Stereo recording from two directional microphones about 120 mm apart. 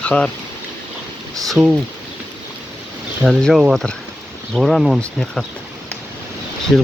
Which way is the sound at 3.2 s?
Centre (ahead or behind).